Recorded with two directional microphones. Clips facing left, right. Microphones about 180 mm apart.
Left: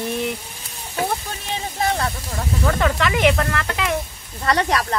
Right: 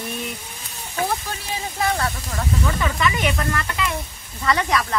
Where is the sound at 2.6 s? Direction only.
70° left (ahead or behind).